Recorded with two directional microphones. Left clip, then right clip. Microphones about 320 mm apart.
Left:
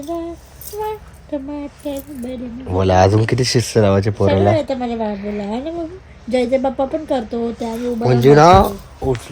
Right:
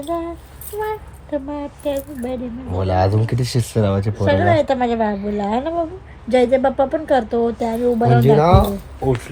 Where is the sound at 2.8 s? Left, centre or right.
Left.